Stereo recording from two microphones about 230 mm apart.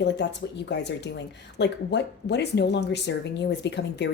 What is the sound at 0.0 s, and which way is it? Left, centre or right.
Speech, left.